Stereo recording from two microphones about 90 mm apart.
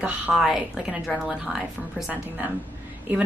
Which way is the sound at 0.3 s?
5° right (ahead or behind).